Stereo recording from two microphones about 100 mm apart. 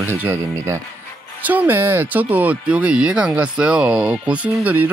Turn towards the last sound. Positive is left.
turn(degrees=-15)  # may be behind; listen again after turning